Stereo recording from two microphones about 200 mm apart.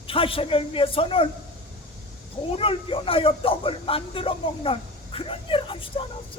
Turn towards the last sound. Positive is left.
turn(degrees=25)  # may be behind; listen again after turning